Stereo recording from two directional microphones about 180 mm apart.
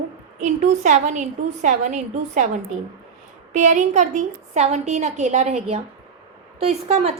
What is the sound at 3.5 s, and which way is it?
A woman's voice, 40° right (ahead or behind).